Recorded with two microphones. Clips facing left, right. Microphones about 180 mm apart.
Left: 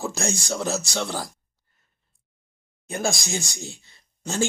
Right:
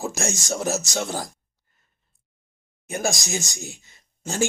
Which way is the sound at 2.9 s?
20° right (ahead or behind).